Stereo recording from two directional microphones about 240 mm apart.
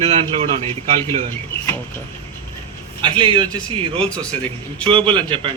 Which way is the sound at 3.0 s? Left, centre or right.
Right.